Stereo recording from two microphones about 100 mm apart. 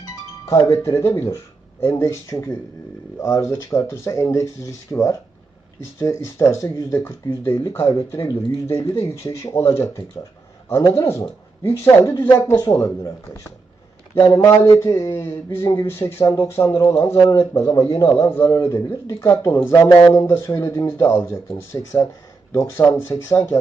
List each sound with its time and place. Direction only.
0.7 s speech: 25° left (ahead or behind)
14.2 s speech: 30° left (ahead or behind)
18.1 s speech: 25° left (ahead or behind)